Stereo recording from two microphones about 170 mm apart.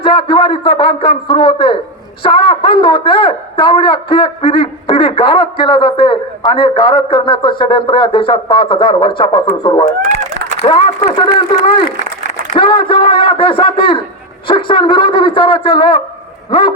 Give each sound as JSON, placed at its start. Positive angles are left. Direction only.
{"t": 0.0, "sound": "a man's voice", "side_deg": 30}
{"t": 12.5, "sound": "a man's voice", "side_deg": 30}